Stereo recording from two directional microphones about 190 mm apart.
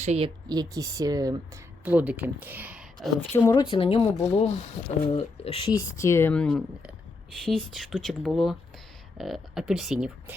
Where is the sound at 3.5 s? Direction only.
30° left (ahead or behind).